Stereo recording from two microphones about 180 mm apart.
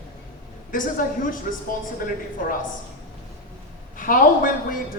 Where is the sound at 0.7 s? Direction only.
50° left (ahead or behind).